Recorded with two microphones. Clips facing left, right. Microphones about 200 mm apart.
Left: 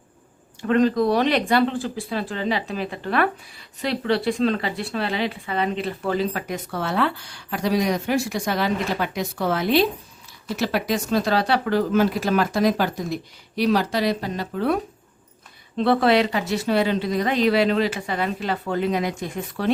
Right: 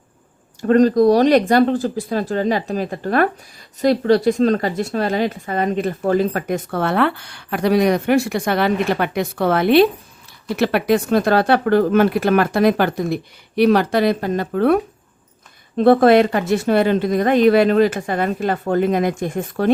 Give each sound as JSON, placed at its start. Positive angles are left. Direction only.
{"t": 0.6, "sound": "a woman's voice", "side_deg": -40}
{"t": 15.8, "sound": "speech", "side_deg": -45}